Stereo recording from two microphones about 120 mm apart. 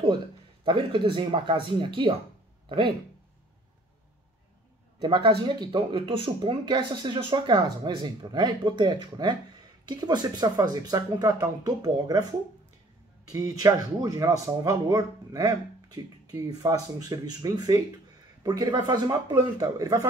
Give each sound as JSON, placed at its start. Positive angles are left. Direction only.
{"t": 0.7, "sound": "speech", "side_deg": -45}
{"t": 5.0, "sound": "speech", "side_deg": -45}